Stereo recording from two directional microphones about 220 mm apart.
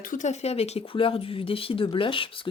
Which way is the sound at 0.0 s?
35° left (ahead or behind).